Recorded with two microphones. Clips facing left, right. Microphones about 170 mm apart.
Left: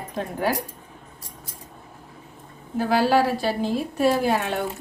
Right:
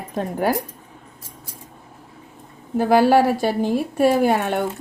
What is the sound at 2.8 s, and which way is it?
Speech, 50° right (ahead or behind).